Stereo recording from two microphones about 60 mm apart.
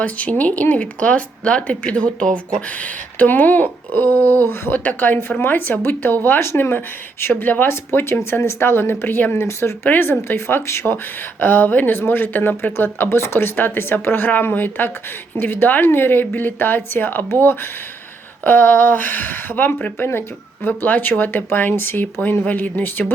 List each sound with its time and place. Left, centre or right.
0.0 s speech: left
20.7 s speech: left